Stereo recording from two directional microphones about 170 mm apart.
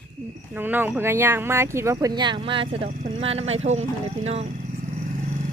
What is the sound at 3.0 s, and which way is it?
Speech, 50° right (ahead or behind).